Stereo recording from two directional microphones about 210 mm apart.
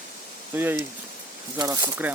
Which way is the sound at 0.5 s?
10° right (ahead or behind).